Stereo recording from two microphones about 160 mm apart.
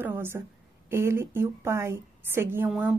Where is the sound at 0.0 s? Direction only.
15° right (ahead or behind).